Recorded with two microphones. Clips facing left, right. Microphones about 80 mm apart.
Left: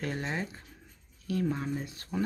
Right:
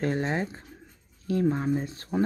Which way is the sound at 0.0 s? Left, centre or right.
Right.